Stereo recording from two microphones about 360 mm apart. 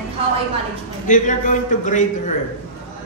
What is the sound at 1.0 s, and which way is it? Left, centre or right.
A man's voice, left.